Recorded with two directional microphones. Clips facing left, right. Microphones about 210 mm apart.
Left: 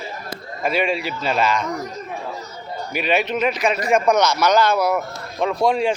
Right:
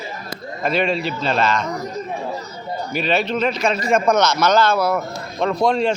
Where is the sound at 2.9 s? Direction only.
10° left (ahead or behind).